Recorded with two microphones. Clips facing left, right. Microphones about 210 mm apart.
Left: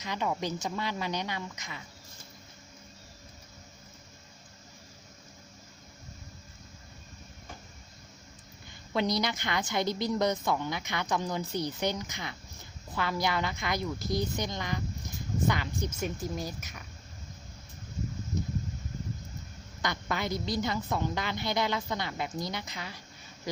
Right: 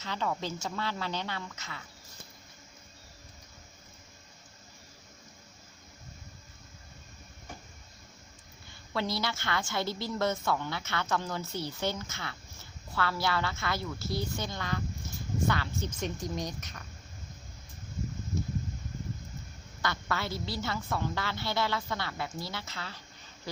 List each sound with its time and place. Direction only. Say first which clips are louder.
0.0 s a woman's voice: left 2 dB; 15° left (ahead or behind)
8.9 s a woman's voice: left 4 dB; 20° left (ahead or behind)
19.8 s a woman's voice: left 1 dB; 15° left (ahead or behind)